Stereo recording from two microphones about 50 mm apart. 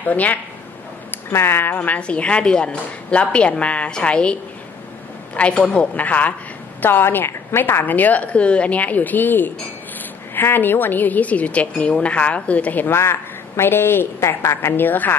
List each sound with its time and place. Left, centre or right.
0.0 s a woman's voice: left
1.3 s a woman's voice: left
2.0 s a woman's voice: left
6.8 s a woman's voice: left
12.8 s a woman's voice: left
14.8 s a woman's voice: left